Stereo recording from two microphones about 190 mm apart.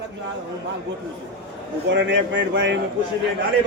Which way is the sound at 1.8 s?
70° right (ahead or behind).